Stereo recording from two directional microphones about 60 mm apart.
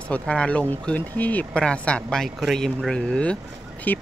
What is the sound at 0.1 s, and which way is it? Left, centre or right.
Speech, left.